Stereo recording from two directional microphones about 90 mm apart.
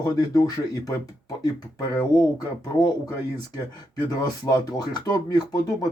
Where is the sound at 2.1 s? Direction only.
40° left (ahead or behind).